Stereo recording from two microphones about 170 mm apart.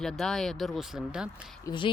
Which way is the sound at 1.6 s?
30° left (ahead or behind).